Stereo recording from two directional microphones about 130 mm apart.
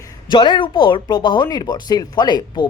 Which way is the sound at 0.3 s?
35° left (ahead or behind).